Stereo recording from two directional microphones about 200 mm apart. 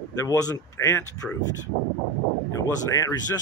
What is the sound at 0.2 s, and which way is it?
Speech, 15° left (ahead or behind).